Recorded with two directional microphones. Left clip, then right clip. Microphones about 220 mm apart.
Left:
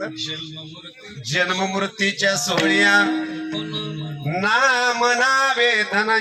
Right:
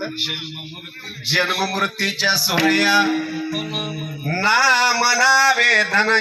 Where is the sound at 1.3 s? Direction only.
15° right (ahead or behind).